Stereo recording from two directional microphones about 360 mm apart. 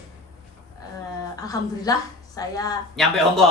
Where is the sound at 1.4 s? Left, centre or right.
Centre.